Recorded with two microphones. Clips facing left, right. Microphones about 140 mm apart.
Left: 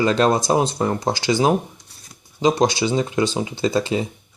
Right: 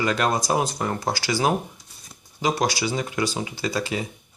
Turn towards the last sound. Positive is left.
turn(degrees=25)  # may be behind; listen again after turning